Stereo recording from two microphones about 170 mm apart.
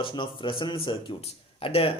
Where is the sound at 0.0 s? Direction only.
30° left (ahead or behind).